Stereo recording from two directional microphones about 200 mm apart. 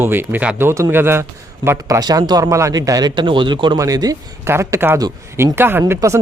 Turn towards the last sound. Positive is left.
turn(degrees=-15)  # may be behind; listen again after turning